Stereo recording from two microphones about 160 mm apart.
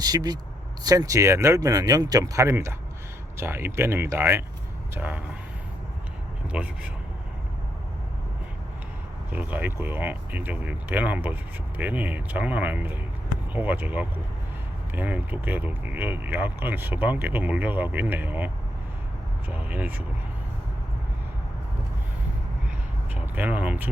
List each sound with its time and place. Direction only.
0.0 s speech: 25° right (ahead or behind)
6.5 s speech: 10° right (ahead or behind)
9.3 s speech: 10° right (ahead or behind)
23.1 s speech: 10° right (ahead or behind)